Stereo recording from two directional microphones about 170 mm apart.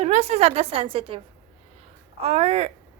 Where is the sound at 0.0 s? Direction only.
40° right (ahead or behind).